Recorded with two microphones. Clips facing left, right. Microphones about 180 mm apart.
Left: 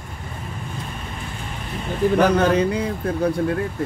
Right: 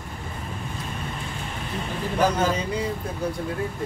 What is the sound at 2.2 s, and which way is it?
Speech, 65° left (ahead or behind).